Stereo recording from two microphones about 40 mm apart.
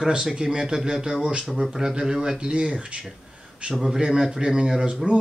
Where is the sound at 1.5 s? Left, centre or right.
Centre; by 2.9 s right.